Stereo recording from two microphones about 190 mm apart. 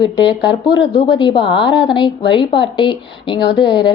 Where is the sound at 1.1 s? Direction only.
25° left (ahead or behind).